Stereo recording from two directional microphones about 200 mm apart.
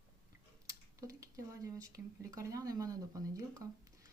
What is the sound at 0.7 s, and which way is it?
Speech, 15° right (ahead or behind).